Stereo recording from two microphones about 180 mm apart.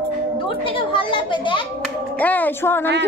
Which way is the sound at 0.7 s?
30° left (ahead or behind).